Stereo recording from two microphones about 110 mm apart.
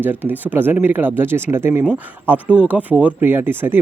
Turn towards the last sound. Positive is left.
turn(degrees=-20)  # may be behind; listen again after turning